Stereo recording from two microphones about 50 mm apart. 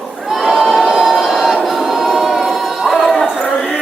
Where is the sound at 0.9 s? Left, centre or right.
Centre.